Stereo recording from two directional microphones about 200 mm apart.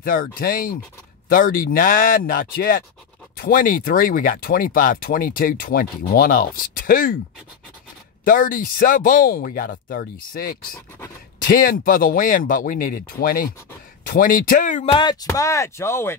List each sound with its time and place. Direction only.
0.0 s speech: 45° left (ahead or behind)
8.2 s speech: 45° left (ahead or behind)
15.0 s speech: 20° left (ahead or behind)